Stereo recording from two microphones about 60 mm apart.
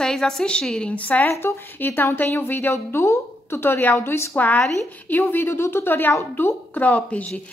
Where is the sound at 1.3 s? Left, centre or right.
Left.